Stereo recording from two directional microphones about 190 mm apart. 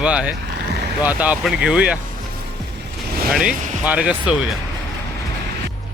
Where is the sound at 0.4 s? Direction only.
60° right (ahead or behind).